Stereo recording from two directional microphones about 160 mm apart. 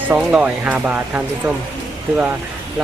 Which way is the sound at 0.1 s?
10° right (ahead or behind).